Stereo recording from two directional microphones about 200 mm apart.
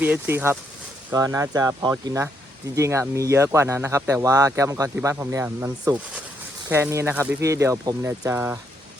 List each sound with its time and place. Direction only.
0.0 s speech: 10° right (ahead or behind)